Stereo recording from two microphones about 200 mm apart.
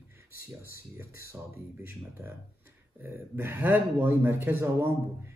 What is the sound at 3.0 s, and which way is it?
A man's voice, 10° right (ahead or behind).